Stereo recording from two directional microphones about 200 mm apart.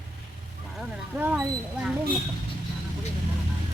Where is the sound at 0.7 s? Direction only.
5° right (ahead or behind).